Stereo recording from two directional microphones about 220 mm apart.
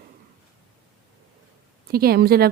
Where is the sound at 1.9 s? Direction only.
45° right (ahead or behind).